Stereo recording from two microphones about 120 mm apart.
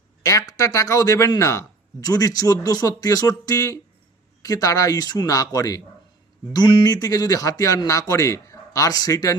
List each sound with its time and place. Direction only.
0.2 s speech: 30° left (ahead or behind)